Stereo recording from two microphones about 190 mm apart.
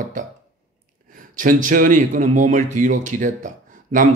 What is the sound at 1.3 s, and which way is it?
Speech, 45° right (ahead or behind).